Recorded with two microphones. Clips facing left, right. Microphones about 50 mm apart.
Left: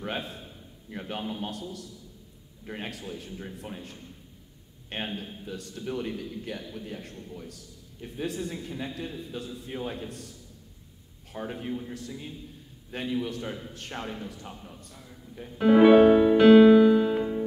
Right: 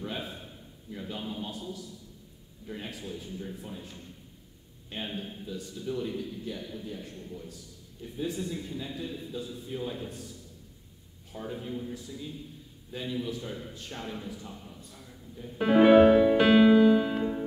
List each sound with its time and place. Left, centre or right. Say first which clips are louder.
0.8 s speech: left 3 dB; left
11.3 s speech: left 3 dB; left
15.5 s speech: left 2 dB; centre
16.3 s music: left 5 dB; centre